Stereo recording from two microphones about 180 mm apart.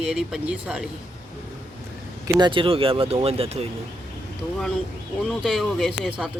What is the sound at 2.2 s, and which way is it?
Speech, 25° right (ahead or behind).